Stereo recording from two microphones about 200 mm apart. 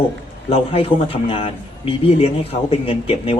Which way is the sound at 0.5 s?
30° left (ahead or behind).